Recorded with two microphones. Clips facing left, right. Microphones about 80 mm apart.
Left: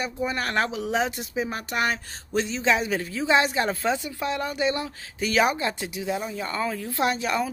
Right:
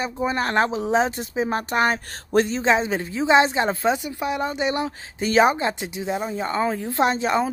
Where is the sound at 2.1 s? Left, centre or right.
Right.